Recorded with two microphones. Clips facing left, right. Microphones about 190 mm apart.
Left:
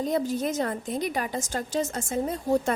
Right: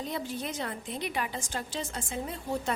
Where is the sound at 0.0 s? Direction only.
45° left (ahead or behind).